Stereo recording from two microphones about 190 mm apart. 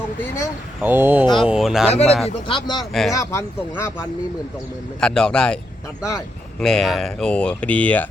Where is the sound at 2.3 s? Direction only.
25° left (ahead or behind).